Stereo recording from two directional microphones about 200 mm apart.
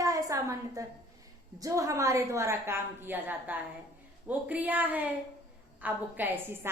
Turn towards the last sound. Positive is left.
turn(degrees=-10)  # may be behind; listen again after turning